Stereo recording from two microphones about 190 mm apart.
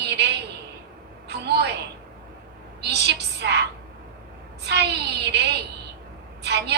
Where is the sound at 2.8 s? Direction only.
60° right (ahead or behind).